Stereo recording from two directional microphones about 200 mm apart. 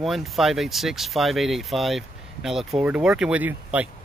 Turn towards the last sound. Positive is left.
turn(degrees=-10)  # may be behind; listen again after turning